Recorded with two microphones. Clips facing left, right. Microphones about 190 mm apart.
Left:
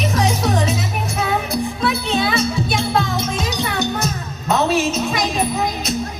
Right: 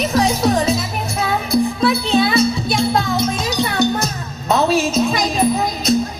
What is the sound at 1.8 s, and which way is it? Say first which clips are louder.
Music: right 4 dB; 35° right (ahead or behind).